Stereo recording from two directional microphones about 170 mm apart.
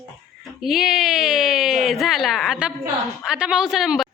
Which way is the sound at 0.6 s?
Centre (ahead or behind).